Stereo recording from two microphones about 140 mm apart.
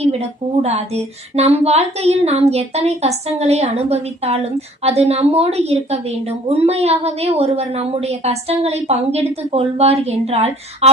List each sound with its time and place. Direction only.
0.0 s speech: 50° right (ahead or behind)